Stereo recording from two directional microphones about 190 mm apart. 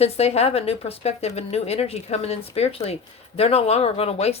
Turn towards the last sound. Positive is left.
turn(degrees=35)  # may be behind; listen again after turning